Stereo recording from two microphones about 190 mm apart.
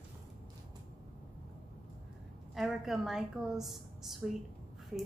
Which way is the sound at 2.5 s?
Centre (ahead or behind).